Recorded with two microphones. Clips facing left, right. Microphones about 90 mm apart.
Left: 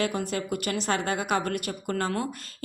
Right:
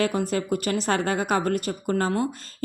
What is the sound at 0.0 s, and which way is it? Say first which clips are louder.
Speech: right 4 dB; 40° right (ahead or behind).